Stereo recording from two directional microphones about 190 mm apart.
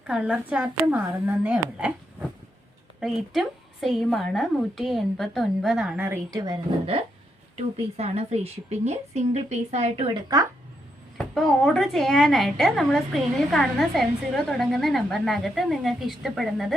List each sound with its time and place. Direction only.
0.1 s speech: 5° right (ahead or behind)
3.0 s a woman's voice: centre (ahead or behind)
6.3 s a woman's voice: 20° right (ahead or behind)
11.2 s a woman's voice: centre (ahead or behind)